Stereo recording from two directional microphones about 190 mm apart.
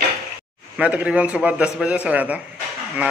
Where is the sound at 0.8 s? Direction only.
5° right (ahead or behind).